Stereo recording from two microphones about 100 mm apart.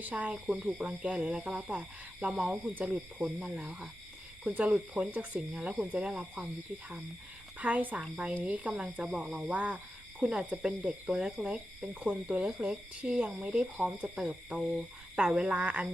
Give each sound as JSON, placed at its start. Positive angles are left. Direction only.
{"t": 0.0, "sound": "speech", "side_deg": -15}
{"t": 7.6, "sound": "speech", "side_deg": -15}